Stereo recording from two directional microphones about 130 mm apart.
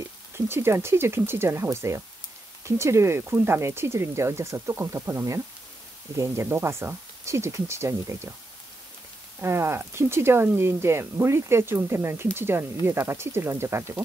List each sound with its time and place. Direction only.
0.5 s speech: 20° right (ahead or behind)
9.4 s speech: 20° right (ahead or behind)